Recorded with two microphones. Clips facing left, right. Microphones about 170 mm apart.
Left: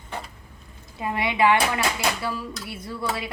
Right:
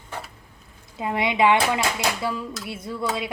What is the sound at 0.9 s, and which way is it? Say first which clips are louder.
Speech: right 2 dB; 20° right (ahead or behind).